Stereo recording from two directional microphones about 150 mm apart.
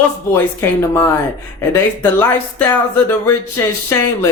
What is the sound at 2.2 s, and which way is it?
Speech, 15° left (ahead or behind).